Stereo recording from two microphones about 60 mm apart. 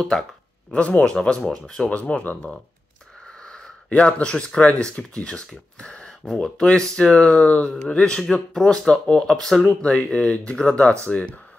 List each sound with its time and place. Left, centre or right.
0.0 s speech: centre
0.7 s speech: left; by 6.5 s centre
7.0 s speech: centre
9.3 s speech: centre
9.7 s speech: centre